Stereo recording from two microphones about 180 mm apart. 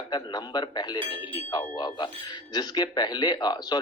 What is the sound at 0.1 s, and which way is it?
A man's voice, 25° left (ahead or behind).